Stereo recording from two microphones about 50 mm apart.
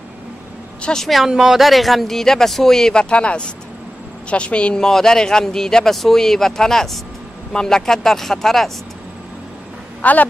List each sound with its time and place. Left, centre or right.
1.0 s a woman's voice: centre; by 4.8 s left
4.8 s speech: centre
10.0 s a woman's voice: left